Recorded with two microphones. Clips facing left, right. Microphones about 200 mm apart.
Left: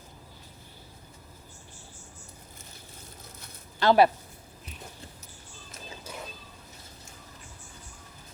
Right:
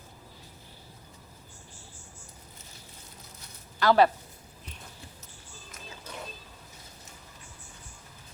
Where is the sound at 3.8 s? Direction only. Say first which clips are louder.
Left 1 dB; 20° left (ahead or behind).